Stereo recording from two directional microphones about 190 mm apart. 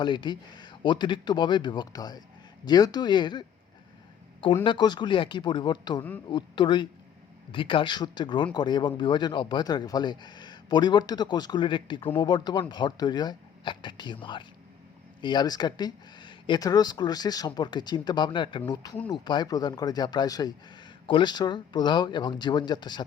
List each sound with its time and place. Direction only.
0.0 s speech: 25° left (ahead or behind)
4.6 s speech: 25° left (ahead or behind)